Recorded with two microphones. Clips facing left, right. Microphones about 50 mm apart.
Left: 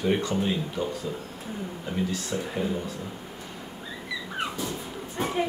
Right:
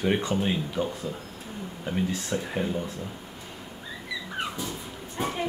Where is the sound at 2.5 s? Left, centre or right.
Centre.